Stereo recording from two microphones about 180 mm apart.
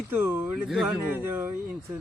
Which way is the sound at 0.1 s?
10° right (ahead or behind).